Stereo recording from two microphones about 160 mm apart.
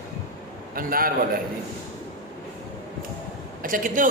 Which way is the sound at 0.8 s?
65° right (ahead or behind).